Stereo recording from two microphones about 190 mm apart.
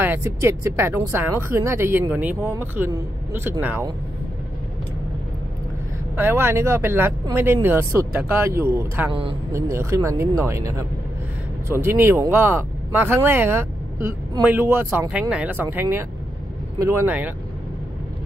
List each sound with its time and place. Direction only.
0.0 s speech: 10° right (ahead or behind)
6.1 s speech: 10° right (ahead or behind)